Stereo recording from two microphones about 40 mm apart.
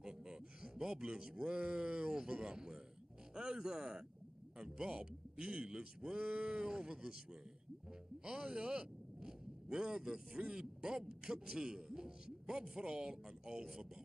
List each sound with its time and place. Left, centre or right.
0.0 s a man's voice: centre
8.2 s speech: centre